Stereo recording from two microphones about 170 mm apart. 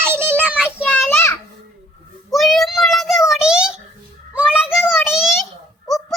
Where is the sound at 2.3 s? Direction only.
Centre (ahead or behind).